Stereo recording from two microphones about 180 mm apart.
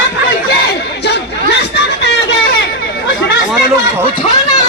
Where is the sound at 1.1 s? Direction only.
70° left (ahead or behind).